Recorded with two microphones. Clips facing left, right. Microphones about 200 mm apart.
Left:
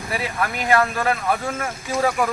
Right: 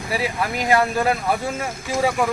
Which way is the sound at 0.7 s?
15° right (ahead or behind).